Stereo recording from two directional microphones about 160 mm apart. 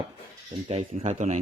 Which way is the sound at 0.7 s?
40° right (ahead or behind).